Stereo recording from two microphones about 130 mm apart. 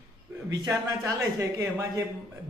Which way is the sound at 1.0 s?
20° right (ahead or behind).